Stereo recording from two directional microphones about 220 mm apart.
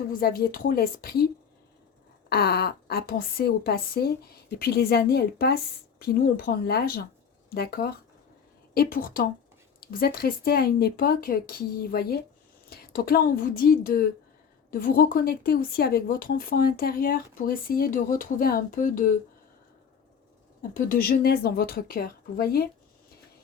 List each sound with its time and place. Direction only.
0.1 s a woman's voice: 40° left (ahead or behind)
2.3 s a woman's voice: 45° left (ahead or behind)
20.6 s a woman's voice: 40° left (ahead or behind)